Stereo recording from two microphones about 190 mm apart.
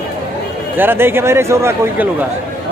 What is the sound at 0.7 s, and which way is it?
A man's voice, 10° right (ahead or behind).